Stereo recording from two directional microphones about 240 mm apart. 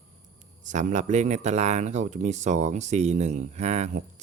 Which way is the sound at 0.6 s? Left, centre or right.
Right.